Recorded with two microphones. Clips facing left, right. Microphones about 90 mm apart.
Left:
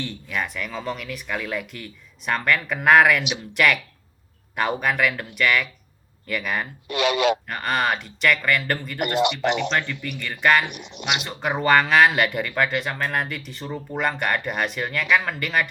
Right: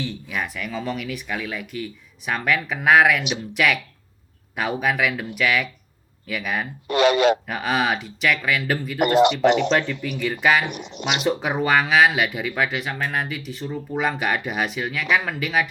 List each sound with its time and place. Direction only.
0.0 s speech: 5° right (ahead or behind)
6.8 s a man's voice: 40° right (ahead or behind)
7.4 s speech: 5° right (ahead or behind)